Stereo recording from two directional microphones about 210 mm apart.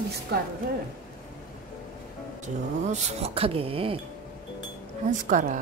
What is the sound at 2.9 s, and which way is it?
Speech, 30° right (ahead or behind).